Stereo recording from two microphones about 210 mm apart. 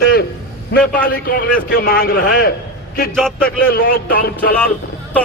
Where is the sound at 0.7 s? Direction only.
50° left (ahead or behind).